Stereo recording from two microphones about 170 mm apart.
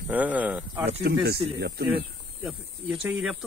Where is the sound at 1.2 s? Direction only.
70° right (ahead or behind).